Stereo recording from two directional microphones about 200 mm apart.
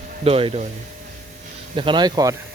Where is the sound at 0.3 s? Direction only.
30° right (ahead or behind).